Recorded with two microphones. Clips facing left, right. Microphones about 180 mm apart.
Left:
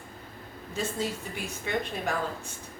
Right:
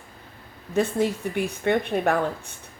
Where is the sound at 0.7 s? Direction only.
60° right (ahead or behind).